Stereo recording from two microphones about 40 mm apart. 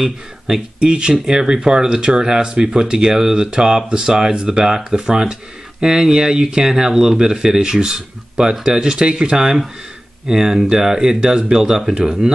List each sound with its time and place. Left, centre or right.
0.0 s speech: centre